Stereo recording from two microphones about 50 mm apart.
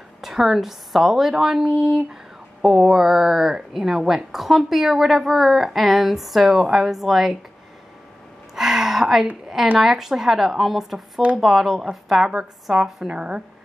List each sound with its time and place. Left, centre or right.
0.2 s a woman's voice: centre
8.5 s a sound: centre
9.8 s a woman's voice: centre
13.0 s speech: right